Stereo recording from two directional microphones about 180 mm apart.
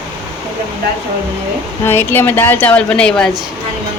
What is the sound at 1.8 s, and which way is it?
A woman's voice, 10° left (ahead or behind).